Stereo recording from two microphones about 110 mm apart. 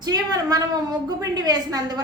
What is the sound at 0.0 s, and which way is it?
A woman's voice, 35° right (ahead or behind).